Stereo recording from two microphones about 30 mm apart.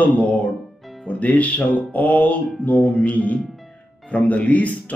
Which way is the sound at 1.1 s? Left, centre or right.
Left.